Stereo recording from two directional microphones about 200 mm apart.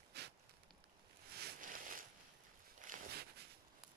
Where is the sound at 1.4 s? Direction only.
50° right (ahead or behind).